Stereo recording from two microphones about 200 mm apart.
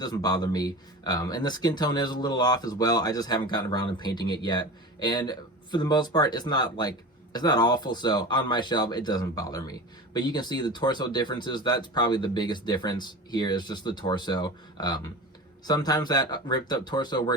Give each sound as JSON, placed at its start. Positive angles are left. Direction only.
{"t": 0.0, "sound": "speech", "side_deg": 20}